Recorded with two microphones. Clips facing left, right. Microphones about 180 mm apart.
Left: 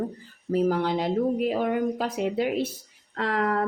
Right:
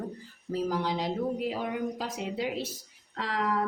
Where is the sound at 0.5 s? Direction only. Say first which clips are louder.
Left 6 dB; 60° left (ahead or behind).